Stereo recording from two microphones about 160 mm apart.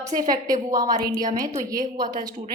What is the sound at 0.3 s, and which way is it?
A woman's voice, 25° right (ahead or behind).